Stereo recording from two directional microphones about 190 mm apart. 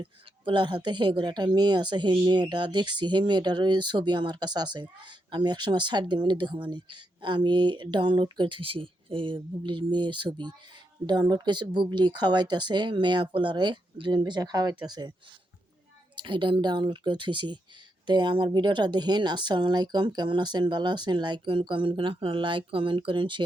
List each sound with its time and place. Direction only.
0.0 s speech: 25° right (ahead or behind)
16.1 s speech: 25° right (ahead or behind)